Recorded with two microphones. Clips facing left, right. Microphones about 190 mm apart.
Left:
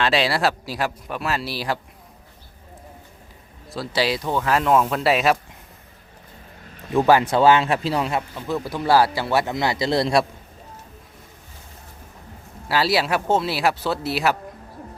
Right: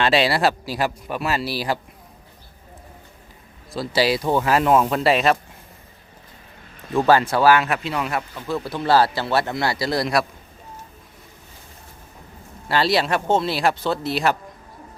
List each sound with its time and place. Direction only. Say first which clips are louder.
0.0 s speech: right 2 dB; centre (ahead or behind)
3.7 s speech: right 3 dB; centre (ahead or behind)
6.9 s speech: left 1 dB; 15° left (ahead or behind)
8.4 s speech: even; 15° left (ahead or behind)
12.6 s speech: right 1 dB; 5° left (ahead or behind)